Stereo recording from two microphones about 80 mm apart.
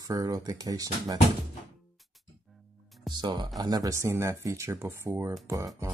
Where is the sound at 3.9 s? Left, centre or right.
Right.